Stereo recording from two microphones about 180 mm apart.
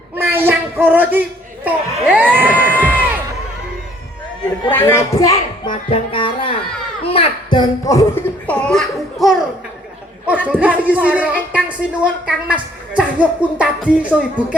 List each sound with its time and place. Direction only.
0.2 s a sound: 10° right (ahead or behind)
2.3 s crowd: 10° right (ahead or behind)
4.7 s speech: 15° left (ahead or behind)
5.9 s music: 30° left (ahead or behind)
7.1 s speech: 30° left (ahead or behind); by 9.4 s centre (ahead or behind)
10.2 s a sound: 10° right (ahead or behind)
11.5 s a woman's voice: 5° right (ahead or behind)